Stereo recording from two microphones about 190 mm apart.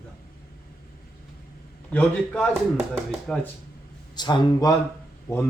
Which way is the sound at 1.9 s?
5° left (ahead or behind).